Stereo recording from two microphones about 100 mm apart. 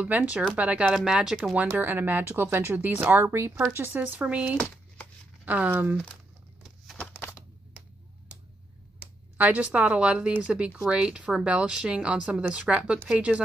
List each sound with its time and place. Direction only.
0.0 s speech: 15° right (ahead or behind)
9.0 s speech: 15° right (ahead or behind)